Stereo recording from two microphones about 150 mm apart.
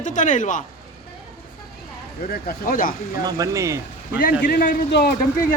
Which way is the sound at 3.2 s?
20° right (ahead or behind).